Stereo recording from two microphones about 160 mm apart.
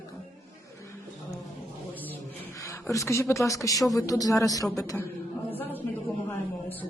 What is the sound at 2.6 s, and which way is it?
Speech, 20° left (ahead or behind).